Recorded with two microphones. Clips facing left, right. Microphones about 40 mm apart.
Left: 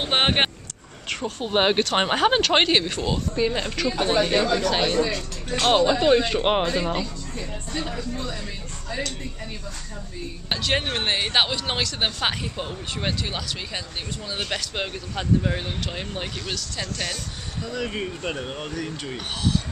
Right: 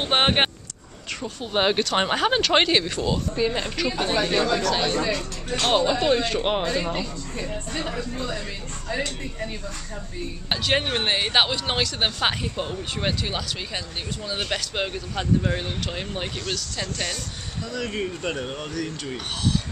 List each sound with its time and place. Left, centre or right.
0.0 s vehicle: centre
1.4 s speech: centre
3.3 s speech: centre
4.9 s speech: centre
5.6 s speech: centre
6.4 s speech: left
7.3 s a woman's voice: centre
10.5 s speech: centre